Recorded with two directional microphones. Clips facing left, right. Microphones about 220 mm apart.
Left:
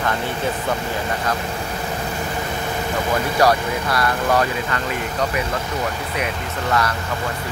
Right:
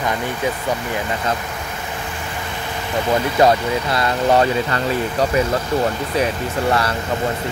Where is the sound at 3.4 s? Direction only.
25° right (ahead or behind).